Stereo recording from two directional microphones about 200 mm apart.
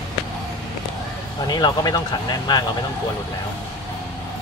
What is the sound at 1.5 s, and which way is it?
Speech, 20° left (ahead or behind).